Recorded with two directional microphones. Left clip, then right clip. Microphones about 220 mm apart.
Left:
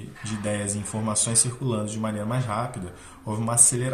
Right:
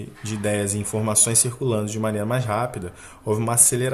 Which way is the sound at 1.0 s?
60° right (ahead or behind).